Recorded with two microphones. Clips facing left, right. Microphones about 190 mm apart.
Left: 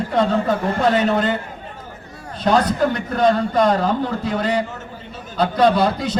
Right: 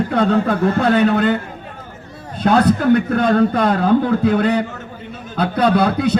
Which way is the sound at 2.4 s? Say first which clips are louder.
Right 4 dB; 55° right (ahead or behind).